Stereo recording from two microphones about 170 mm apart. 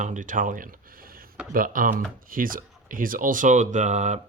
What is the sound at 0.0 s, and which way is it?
Speech, 50° right (ahead or behind).